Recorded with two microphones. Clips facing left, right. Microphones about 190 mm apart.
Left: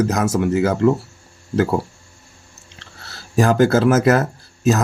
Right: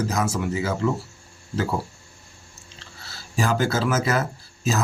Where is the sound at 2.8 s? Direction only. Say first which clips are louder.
Left 3 dB; 65° left (ahead or behind).